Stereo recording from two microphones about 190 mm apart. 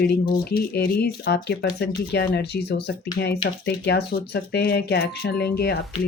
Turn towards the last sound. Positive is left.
turn(degrees=60)  # may be behind; listen again after turning